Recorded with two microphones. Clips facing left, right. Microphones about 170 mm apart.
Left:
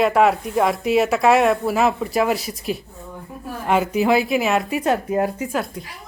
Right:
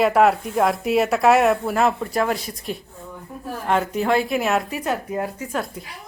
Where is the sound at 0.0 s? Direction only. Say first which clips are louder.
Even; centre (ahead or behind).